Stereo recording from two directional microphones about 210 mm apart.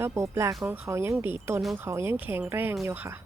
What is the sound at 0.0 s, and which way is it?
Speech, 10° right (ahead or behind).